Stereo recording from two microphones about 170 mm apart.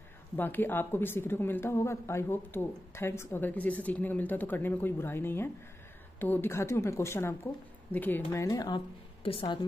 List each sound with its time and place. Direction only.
0.4 s a woman's voice: 10° left (ahead or behind); by 9.7 s 30° left (ahead or behind)